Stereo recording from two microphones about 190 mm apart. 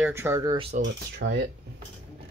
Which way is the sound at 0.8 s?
65° right (ahead or behind).